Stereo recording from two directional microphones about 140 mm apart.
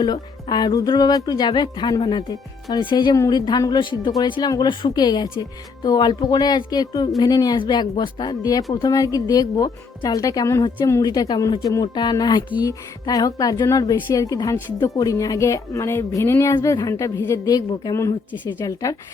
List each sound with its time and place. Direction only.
0.0 s a woman's voice: 30° left (ahead or behind)